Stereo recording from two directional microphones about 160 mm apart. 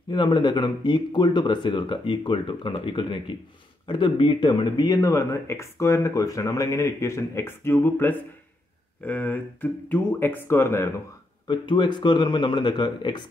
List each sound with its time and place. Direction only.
0.1 s speech: 30° left (ahead or behind)
11.4 s speech: 30° left (ahead or behind)